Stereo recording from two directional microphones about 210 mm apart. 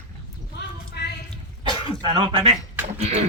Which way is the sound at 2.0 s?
25° right (ahead or behind).